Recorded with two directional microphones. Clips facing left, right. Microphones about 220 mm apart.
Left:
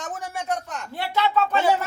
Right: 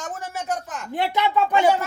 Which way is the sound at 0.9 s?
15° right (ahead or behind).